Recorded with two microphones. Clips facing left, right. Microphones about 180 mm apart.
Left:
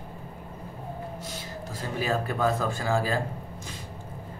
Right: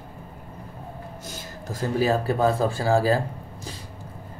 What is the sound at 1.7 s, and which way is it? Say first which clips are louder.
Speech: right 7 dB; 35° right (ahead or behind).